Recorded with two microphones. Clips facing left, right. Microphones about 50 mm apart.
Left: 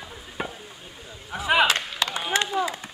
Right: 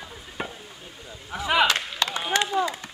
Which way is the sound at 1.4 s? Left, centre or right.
Centre.